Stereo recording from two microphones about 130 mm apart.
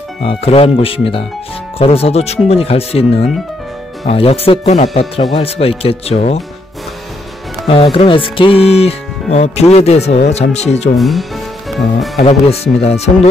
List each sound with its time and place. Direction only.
0.2 s speech: 45° left (ahead or behind)
4.1 s speech: 50° left (ahead or behind)
7.6 s speech: 45° left (ahead or behind)
11.0 s speech: centre (ahead or behind)
12.2 s speech: 55° left (ahead or behind)